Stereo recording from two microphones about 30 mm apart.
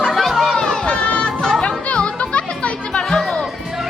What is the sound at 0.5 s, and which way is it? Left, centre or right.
Crowd, left.